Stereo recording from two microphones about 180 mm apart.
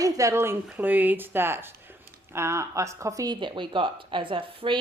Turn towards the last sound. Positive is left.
turn(degrees=-30)  # may be behind; listen again after turning